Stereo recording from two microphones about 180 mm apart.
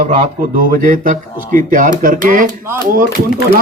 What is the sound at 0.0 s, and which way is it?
Speech, 45° right (ahead or behind).